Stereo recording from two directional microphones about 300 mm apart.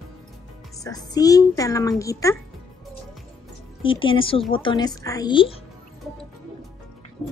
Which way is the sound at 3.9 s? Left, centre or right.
Centre.